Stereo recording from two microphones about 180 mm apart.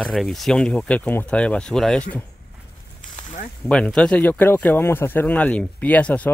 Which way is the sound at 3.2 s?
40° left (ahead or behind).